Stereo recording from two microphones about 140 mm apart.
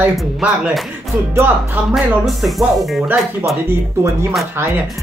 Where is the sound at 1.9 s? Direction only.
Centre (ahead or behind).